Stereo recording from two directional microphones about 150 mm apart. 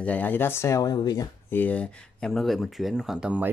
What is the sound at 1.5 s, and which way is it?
Speech, 10° left (ahead or behind).